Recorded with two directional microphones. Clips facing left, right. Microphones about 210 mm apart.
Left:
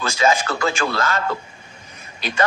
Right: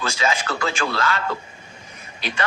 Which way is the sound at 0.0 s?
45° left (ahead or behind).